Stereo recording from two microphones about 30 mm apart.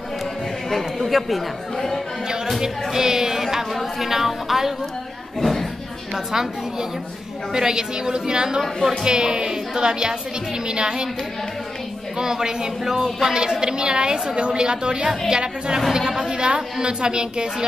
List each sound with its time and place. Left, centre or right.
0.7 s speech: centre
2.6 s speech: centre
5.4 s speech: centre
6.1 s a woman's voice: centre
12.2 s a woman's voice: right